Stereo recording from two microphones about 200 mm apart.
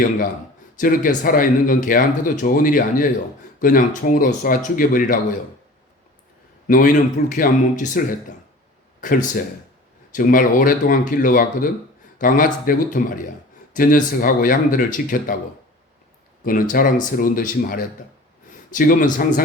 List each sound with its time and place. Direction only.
0.8 s speech: 45° left (ahead or behind)
6.7 s speech: 45° left (ahead or behind)
16.4 s a man's voice: 45° left (ahead or behind)